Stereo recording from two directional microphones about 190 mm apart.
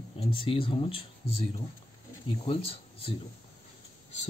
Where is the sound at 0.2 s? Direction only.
25° left (ahead or behind).